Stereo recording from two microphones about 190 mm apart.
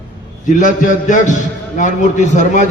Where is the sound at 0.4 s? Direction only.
45° left (ahead or behind).